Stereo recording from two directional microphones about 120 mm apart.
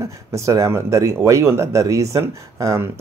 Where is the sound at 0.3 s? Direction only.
25° right (ahead or behind).